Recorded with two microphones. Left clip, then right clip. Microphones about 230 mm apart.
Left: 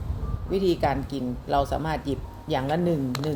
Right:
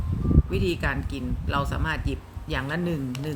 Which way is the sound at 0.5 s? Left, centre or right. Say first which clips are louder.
Left 8 dB; centre.